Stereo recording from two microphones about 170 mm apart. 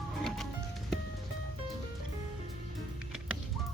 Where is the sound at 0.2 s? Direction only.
Centre (ahead or behind).